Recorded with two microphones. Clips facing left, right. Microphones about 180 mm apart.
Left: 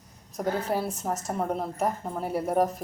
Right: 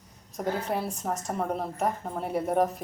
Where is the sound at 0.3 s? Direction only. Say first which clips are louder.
Left 2 dB; centre (ahead or behind).